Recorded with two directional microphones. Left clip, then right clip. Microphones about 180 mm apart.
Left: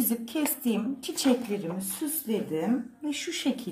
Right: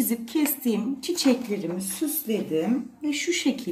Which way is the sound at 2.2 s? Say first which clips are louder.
Right 3 dB; 35° left (ahead or behind).